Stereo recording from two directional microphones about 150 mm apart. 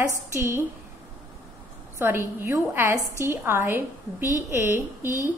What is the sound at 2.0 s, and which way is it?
A woman's voice, 15° right (ahead or behind).